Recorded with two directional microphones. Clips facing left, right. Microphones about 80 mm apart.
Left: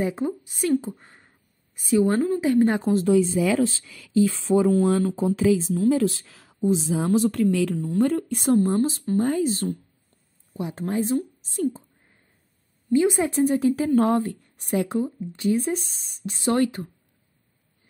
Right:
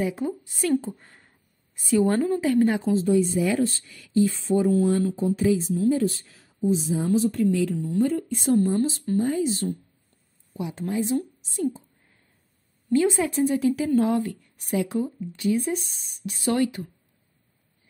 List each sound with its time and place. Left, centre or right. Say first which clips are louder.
0.0 s speech: left 1 dB; left
2.7 s speech: left 1 dB; left
3.0 s speech: left 3 dB; left
4.2 s speech: left 2 dB; left
7.7 s speech: left 1 dB; left
12.9 s speech: left 1 dB; centre
13.3 s speech: left 2 dB; left
13.9 s speech: left 2 dB; left
14.2 s speech: left 1 dB; left